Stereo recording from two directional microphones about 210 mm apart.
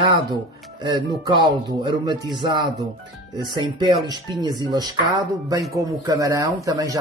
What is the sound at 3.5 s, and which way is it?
Speech, 20° right (ahead or behind).